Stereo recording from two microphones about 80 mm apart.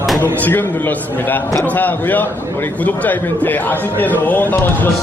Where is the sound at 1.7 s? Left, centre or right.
Left.